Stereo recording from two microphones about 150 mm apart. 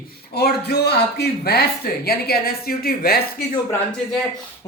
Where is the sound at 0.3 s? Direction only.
90° left.